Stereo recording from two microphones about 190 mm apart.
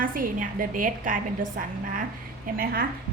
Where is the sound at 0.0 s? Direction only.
45° right (ahead or behind).